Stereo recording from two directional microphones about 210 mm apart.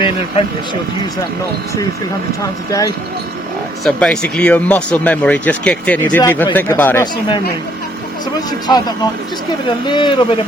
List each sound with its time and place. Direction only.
2.4 s speech: 15° left (ahead or behind)
3.8 s speech: 5° left (ahead or behind)
7.0 s speech: 20° left (ahead or behind)
8.4 s speech: 20° left (ahead or behind)